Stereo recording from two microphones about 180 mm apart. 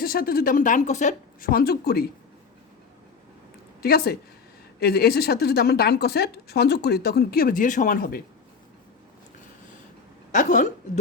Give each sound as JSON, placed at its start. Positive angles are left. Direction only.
{"t": 0.0, "sound": "a woman's voice", "side_deg": 55}
{"t": 3.8, "sound": "a woman's voice", "side_deg": 60}
{"t": 10.3, "sound": "speech", "side_deg": 45}